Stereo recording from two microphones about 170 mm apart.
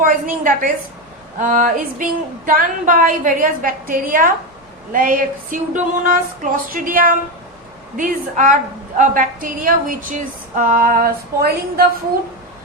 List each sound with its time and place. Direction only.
0.0 s a woman's voice: 55° right (ahead or behind)